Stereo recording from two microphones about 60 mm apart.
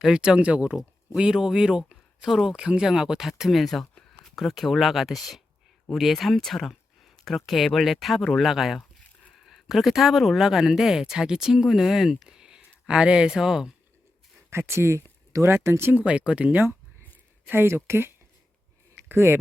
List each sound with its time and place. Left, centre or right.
0.0 s speech: centre
0.8 s speech: centre
14.5 s speech: right
16.0 s speech: right
17.5 s speech: right